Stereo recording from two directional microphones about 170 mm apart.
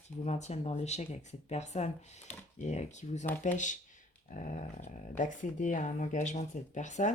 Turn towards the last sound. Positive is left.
turn(degrees=45)  # may be behind; listen again after turning